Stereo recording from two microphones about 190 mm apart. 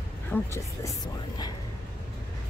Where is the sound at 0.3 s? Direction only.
15° left (ahead or behind).